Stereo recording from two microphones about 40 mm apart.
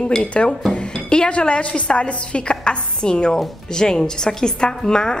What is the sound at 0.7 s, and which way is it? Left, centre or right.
A woman's voice, left.